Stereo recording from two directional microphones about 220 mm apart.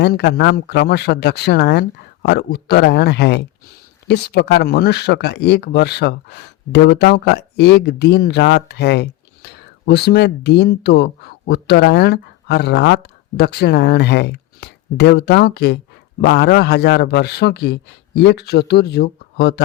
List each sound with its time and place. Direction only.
0.0 s speech: 50° left (ahead or behind)